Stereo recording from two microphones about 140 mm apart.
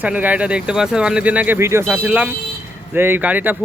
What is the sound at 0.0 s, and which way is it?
Speech, 10° right (ahead or behind).